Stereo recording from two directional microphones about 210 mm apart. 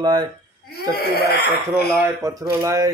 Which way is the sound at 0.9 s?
50° left (ahead or behind).